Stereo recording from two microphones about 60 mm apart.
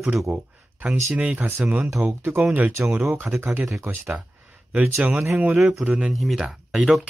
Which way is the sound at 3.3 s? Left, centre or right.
Right.